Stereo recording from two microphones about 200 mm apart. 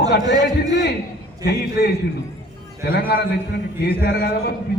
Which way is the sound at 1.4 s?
55° left (ahead or behind).